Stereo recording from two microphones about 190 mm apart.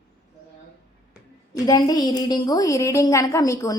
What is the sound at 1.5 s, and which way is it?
A woman's voice, 20° left (ahead or behind).